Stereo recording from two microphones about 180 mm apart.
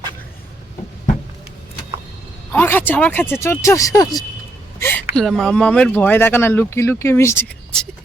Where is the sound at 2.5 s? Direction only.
10° left (ahead or behind).